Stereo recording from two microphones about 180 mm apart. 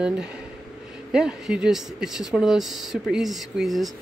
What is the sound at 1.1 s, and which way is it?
Speech, 5° right (ahead or behind).